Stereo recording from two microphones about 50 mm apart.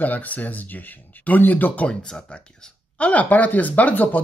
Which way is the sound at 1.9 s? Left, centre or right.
Centre.